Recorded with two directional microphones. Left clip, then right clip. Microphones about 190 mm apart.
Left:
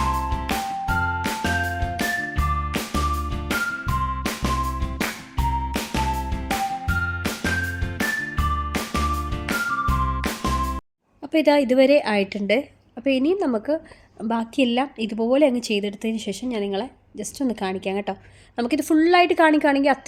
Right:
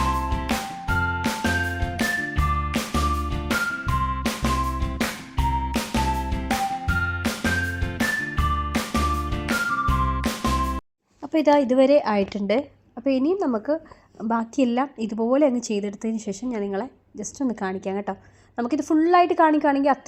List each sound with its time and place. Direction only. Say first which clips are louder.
0.0 s music: left 1 dB; centre (ahead or behind)
11.3 s speech: left 1 dB; centre (ahead or behind)
13.4 s a woman's voice: left 1 dB; 15° left (ahead or behind)
14.2 s a woman's voice: left 1 dB; 5° right (ahead or behind)